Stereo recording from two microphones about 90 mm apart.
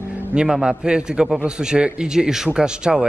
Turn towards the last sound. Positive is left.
turn(degrees=-10)  # may be behind; listen again after turning